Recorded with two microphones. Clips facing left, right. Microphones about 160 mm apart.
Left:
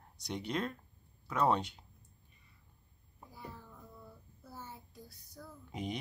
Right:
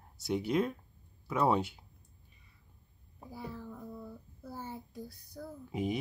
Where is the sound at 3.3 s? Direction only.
75° right (ahead or behind).